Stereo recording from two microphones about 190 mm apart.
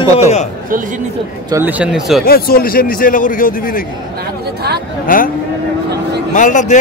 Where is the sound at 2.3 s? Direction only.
50° left (ahead or behind).